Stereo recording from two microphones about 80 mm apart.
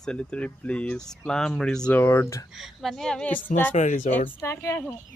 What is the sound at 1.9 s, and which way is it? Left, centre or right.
Speech, left.